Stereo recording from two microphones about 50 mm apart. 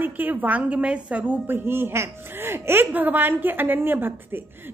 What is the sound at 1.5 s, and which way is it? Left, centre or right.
A woman's voice, right.